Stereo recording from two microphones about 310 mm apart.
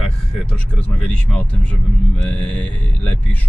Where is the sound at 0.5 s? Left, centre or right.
Centre.